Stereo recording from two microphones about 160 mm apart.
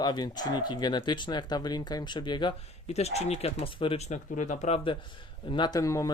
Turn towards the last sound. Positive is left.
turn(degrees=20)  # may be behind; listen again after turning